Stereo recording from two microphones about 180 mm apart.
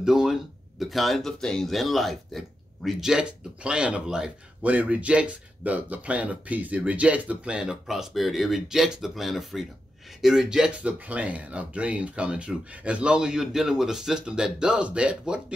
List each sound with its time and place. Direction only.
0.0 s speech: 5° right (ahead or behind)